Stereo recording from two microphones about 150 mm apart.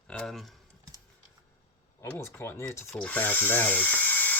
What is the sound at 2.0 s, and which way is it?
Speech, 15° left (ahead or behind).